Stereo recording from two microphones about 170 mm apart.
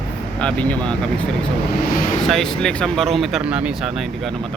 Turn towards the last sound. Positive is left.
turn(degrees=-5)  # may be behind; listen again after turning